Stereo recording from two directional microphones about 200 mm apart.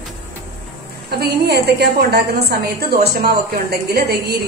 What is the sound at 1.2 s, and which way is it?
A woman's voice, 55° right (ahead or behind).